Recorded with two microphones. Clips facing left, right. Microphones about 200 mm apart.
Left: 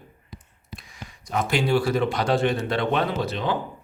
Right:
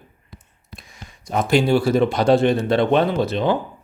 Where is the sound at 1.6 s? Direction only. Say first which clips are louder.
Right 5 dB; 25° right (ahead or behind).